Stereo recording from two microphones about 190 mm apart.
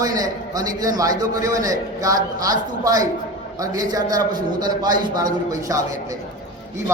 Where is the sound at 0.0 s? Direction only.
20° right (ahead or behind).